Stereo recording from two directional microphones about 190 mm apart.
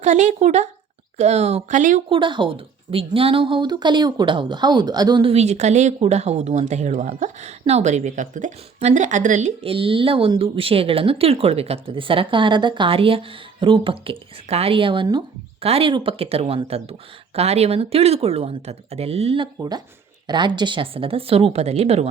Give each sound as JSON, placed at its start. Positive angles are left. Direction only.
{"t": 0.0, "sound": "speech", "side_deg": -35}
{"t": 2.0, "sound": "speech", "side_deg": -25}
{"t": 19.5, "sound": "speech", "side_deg": -20}